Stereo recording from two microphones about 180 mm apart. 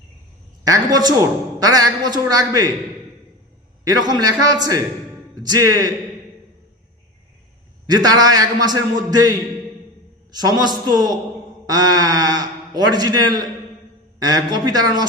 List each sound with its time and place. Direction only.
0.6 s a man's voice: 20° right (ahead or behind)
3.8 s a man's voice: 20° right (ahead or behind)
7.9 s a man's voice: 20° right (ahead or behind)
10.3 s a man's voice: 20° right (ahead or behind)